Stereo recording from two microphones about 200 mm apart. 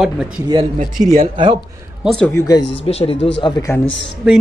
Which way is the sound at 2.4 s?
20° left (ahead or behind).